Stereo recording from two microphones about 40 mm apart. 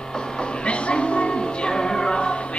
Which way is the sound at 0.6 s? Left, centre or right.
Left.